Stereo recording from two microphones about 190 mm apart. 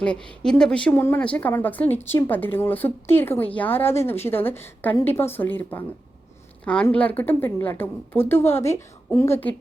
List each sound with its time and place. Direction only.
0.0 s a woman's voice: 5° left (ahead or behind)